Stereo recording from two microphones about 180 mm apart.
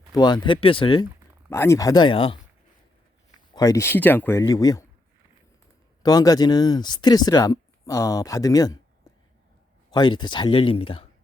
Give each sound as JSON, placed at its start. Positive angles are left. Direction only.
{"t": 0.1, "sound": "speech", "side_deg": 25}
{"t": 1.5, "sound": "speech", "side_deg": 15}
{"t": 3.5, "sound": "speech", "side_deg": 20}
{"t": 6.0, "sound": "speech", "side_deg": 20}
{"t": 9.9, "sound": "speech", "side_deg": 25}